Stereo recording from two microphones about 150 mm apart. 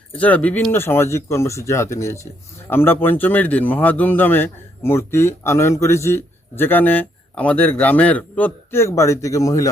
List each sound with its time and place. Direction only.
0.2 s speech: 10° left (ahead or behind)